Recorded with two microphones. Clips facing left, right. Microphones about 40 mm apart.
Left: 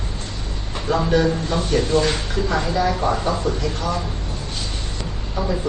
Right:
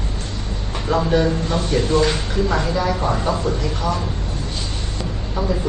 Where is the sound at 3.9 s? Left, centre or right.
Centre.